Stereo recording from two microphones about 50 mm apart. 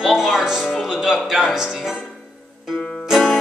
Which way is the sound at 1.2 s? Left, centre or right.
Centre.